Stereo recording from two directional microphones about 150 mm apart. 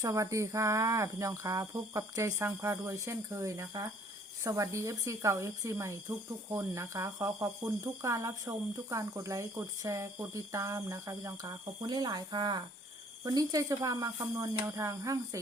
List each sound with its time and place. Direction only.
0.0 s speech: 20° right (ahead or behind)